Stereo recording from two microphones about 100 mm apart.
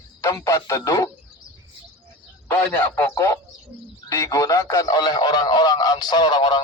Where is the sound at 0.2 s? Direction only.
30° left (ahead or behind).